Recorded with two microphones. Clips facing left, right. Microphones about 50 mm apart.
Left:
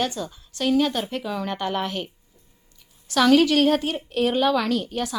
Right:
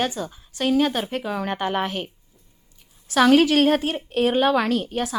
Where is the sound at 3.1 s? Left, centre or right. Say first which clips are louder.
Right 1 dB; right.